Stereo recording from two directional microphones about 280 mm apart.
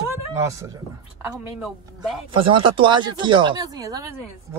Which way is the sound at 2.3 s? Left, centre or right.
Centre.